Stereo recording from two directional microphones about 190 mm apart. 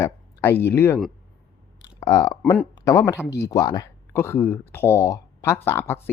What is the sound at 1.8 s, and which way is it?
Clicking, 20° left (ahead or behind).